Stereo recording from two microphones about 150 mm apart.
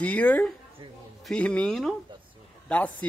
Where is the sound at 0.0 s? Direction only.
10° left (ahead or behind).